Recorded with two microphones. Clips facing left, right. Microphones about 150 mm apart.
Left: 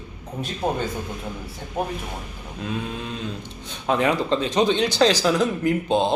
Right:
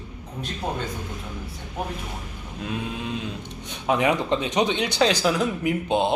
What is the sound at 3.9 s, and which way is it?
Speech, 15° right (ahead or behind).